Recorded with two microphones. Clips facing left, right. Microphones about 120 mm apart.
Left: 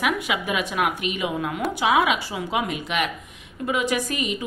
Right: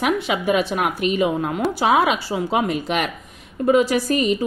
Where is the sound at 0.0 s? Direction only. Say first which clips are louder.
Right 4 dB; 30° right (ahead or behind).